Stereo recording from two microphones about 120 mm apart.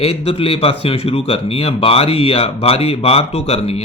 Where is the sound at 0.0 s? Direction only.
50° left (ahead or behind).